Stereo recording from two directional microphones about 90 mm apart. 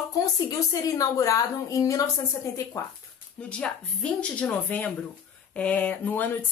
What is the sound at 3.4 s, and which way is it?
Speech, 10° left (ahead or behind).